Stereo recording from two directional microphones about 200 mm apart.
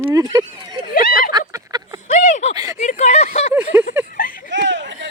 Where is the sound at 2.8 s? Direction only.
35° left (ahead or behind).